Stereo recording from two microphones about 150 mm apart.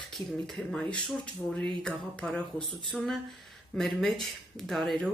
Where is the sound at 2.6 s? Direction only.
35° right (ahead or behind).